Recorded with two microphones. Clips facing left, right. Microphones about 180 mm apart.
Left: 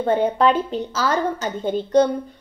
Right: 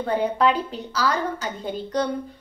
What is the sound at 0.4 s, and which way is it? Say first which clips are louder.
A woman's voice: left 3 dB; 20° left (ahead or behind).